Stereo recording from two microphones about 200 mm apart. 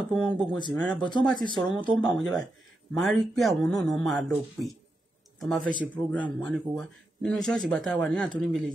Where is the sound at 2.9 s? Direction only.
Centre (ahead or behind).